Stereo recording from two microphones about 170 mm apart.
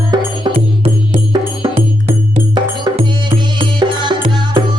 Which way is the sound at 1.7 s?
35° right (ahead or behind).